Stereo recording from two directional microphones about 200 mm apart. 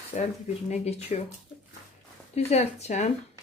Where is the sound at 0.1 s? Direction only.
30° left (ahead or behind).